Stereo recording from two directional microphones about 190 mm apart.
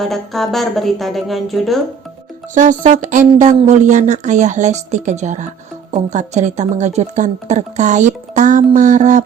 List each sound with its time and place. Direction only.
0.0 s speech: centre (ahead or behind)
2.6 s speech: 40° right (ahead or behind)